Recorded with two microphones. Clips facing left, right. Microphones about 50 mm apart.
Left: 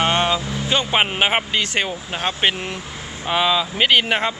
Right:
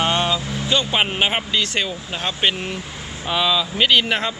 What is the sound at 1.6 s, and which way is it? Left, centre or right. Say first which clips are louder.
Speech: left 1 dB; centre.